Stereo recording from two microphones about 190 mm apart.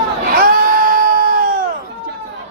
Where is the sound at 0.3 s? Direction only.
50° right (ahead or behind).